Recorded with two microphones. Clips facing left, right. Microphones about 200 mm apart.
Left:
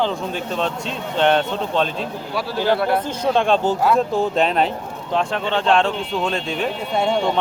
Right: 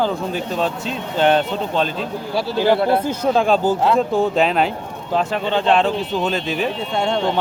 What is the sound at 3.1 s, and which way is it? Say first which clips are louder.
A man's voice: right 1 dB; 5° right (ahead or behind).